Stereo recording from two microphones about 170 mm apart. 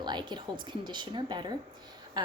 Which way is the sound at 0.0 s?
25° right (ahead or behind).